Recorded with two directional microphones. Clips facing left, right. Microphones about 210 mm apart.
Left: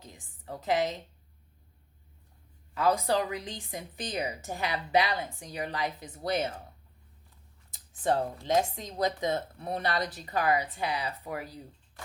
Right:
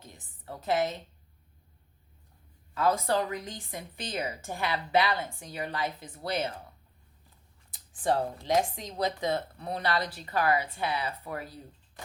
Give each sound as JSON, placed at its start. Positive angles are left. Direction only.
{"t": 0.6, "sound": "speech", "side_deg": 15}
{"t": 2.7, "sound": "a woman's voice", "side_deg": 15}
{"t": 8.0, "sound": "a woman's voice", "side_deg": 25}